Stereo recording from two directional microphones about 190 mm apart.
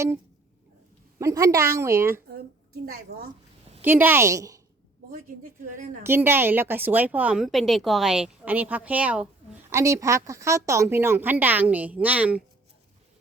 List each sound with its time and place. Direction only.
1.2 s a woman's voice: 15° right (ahead or behind)
3.8 s a woman's voice: 10° right (ahead or behind)
5.1 s a woman's voice: 45° right (ahead or behind)
6.0 s a woman's voice: 10° right (ahead or behind)